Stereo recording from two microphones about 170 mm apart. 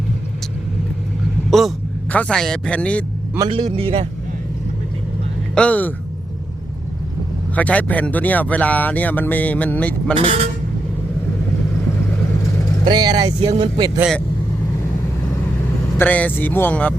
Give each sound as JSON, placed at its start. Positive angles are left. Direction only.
{"t": 1.5, "sound": "speech", "side_deg": 0}
{"t": 3.3, "sound": "speech", "side_deg": -20}
{"t": 3.8, "sound": "speech", "side_deg": -35}
{"t": 5.5, "sound": "speech", "side_deg": 10}
{"t": 7.5, "sound": "speech", "side_deg": 10}
{"t": 10.2, "sound": "speech", "side_deg": -35}
{"t": 12.8, "sound": "speech", "side_deg": -25}
{"t": 13.4, "sound": "speech", "side_deg": -35}
{"t": 16.0, "sound": "speech", "side_deg": 10}